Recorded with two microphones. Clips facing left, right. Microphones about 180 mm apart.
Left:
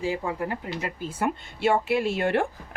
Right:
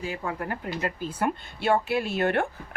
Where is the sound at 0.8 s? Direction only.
25° left (ahead or behind).